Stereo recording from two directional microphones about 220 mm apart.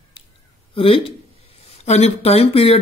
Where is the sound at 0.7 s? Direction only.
25° left (ahead or behind).